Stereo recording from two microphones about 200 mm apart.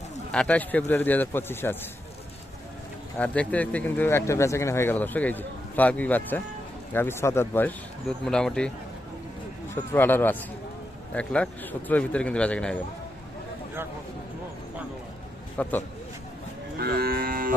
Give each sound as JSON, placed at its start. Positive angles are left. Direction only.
{"t": 0.3, "sound": "speech", "side_deg": 5}
{"t": 3.2, "sound": "speech", "side_deg": 5}
{"t": 9.9, "sound": "speech", "side_deg": 10}
{"t": 15.6, "sound": "speech", "side_deg": 5}
{"t": 16.7, "sound": "moo", "side_deg": -50}